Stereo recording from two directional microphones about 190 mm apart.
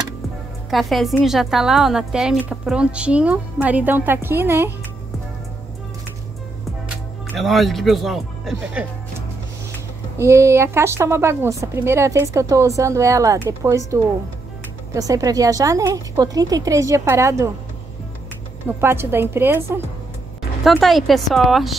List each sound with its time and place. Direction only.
0.7 s a woman's voice: centre (ahead or behind)
7.3 s a woman's voice: centre (ahead or behind)
10.1 s a woman's voice: 15° right (ahead or behind)
18.8 s a woman's voice: 10° right (ahead or behind)
20.6 s a woman's voice: centre (ahead or behind)